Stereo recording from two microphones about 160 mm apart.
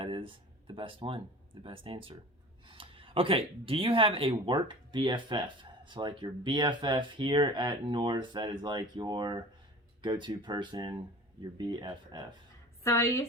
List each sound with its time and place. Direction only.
0.0 s speech: 35° right (ahead or behind)
12.8 s a woman's voice: 20° left (ahead or behind)